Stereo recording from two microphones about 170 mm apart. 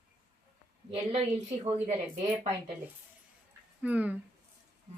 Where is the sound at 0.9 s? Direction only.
35° right (ahead or behind).